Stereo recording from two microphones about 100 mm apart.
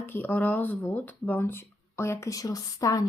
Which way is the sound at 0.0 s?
20° left (ahead or behind).